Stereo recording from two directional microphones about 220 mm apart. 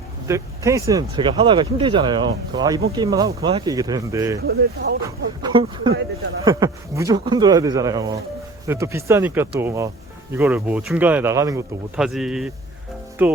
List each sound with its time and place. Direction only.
0.3 s speech: 15° right (ahead or behind)
4.4 s speech: 50° right (ahead or behind)
5.0 s speech: 20° right (ahead or behind)
11.9 s speech: centre (ahead or behind)